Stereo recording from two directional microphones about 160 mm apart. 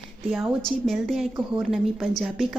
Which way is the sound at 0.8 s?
Centre (ahead or behind).